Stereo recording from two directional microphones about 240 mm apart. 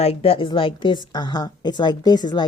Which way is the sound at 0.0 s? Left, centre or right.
Left.